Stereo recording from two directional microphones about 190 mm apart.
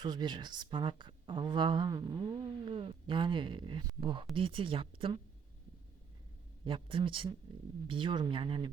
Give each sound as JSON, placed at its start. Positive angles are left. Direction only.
{"t": 0.0, "sound": "speech", "side_deg": -20}
{"t": 6.7, "sound": "speech", "side_deg": -25}